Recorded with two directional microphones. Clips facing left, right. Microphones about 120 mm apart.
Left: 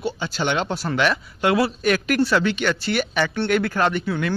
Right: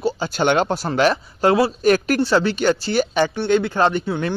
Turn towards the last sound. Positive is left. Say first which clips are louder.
# right 3 dB
turn(degrees=-30)  # may be behind; listen again after turning